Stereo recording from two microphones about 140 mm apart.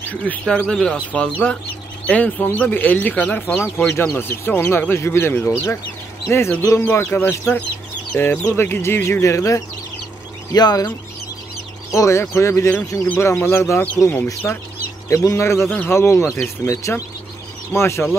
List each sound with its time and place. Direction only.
0.1 s speech: 10° left (ahead or behind); by 10.9 s 30° left (ahead or behind)
11.9 s speech: 20° left (ahead or behind)